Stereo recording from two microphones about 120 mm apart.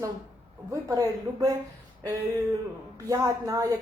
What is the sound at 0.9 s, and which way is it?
Speech, 30° right (ahead or behind).